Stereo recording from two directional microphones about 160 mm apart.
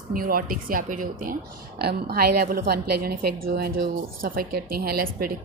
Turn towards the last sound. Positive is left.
turn(degrees=-70)  # may be behind; listen again after turning